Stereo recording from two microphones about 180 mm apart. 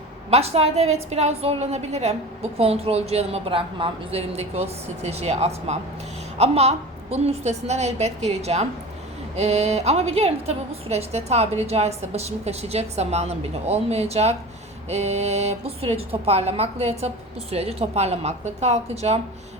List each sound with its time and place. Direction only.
0.3 s a woman's voice: 35° right (ahead or behind)